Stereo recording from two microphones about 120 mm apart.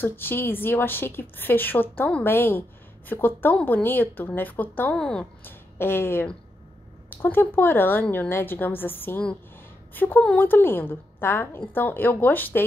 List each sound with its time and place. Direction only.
0.0 s a woman's voice: 15° left (ahead or behind)
5.4 s a woman's voice: 20° left (ahead or behind)